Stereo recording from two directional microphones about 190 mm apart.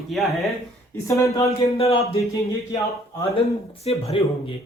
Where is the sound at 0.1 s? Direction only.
Centre (ahead or behind).